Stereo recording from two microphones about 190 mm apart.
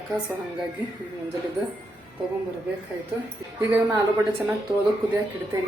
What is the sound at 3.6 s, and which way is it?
Speech, 15° right (ahead or behind).